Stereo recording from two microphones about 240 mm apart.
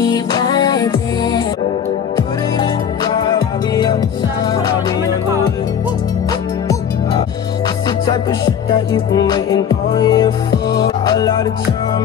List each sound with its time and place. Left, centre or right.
0.0 s music: centre
3.2 s music: centre
8.9 s music: centre